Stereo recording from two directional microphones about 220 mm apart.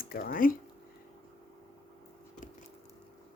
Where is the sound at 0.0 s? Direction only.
40° left (ahead or behind).